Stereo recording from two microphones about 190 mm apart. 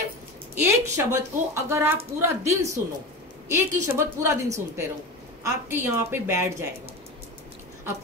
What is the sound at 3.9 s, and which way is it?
A woman's voice, 15° right (ahead or behind).